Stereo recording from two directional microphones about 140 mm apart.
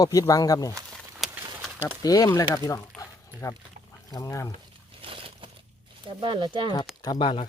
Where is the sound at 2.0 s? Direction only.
25° left (ahead or behind).